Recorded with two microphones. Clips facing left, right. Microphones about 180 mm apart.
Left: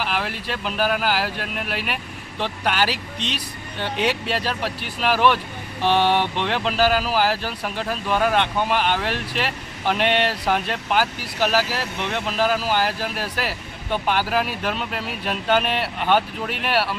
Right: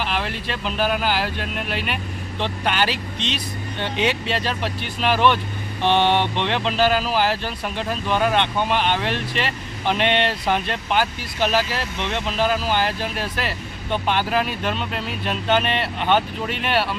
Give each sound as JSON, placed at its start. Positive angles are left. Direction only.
{"t": 0.0, "sound": "speech", "side_deg": 5}